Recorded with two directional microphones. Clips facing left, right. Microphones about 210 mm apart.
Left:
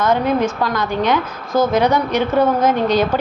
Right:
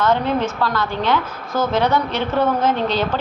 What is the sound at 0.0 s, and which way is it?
A woman's voice, 15° left (ahead or behind).